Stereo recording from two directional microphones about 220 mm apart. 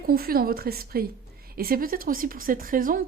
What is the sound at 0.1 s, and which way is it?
A woman's voice, 45° right (ahead or behind).